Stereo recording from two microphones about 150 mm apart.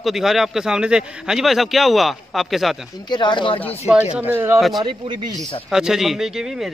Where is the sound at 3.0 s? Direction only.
30° left (ahead or behind).